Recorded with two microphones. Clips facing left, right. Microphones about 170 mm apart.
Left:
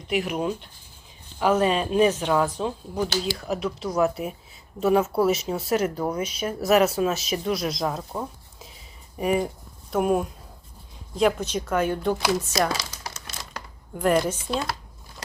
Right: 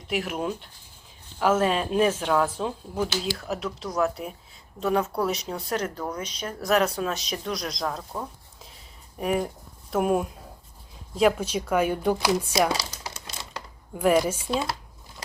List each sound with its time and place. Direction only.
0.1 s speech: centre (ahead or behind)
12.7 s crumpling: 25° right (ahead or behind)
13.9 s speech: 5° right (ahead or behind)